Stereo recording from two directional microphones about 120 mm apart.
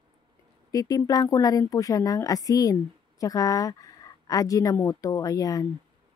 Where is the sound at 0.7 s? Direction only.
30° left (ahead or behind).